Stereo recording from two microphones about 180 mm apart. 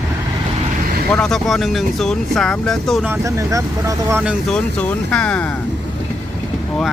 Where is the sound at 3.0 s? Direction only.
15° right (ahead or behind).